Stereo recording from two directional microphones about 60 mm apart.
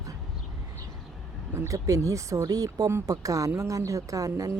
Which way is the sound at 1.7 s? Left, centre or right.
Right.